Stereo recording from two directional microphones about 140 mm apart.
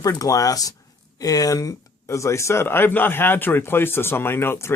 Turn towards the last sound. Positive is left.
turn(degrees=20)  # may be behind; listen again after turning